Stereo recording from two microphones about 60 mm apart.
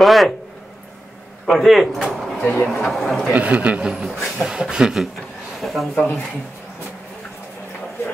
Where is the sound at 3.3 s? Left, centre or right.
Right.